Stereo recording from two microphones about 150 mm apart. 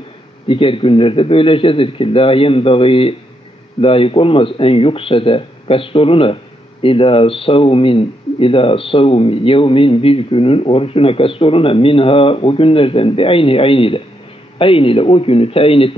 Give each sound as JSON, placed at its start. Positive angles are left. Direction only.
{"t": 0.5, "sound": "speech", "side_deg": 35}